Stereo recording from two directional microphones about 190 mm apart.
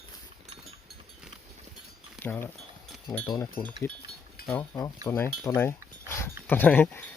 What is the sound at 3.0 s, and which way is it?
Speech, 15° left (ahead or behind).